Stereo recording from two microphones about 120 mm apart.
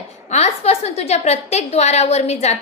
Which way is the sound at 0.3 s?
65° left (ahead or behind).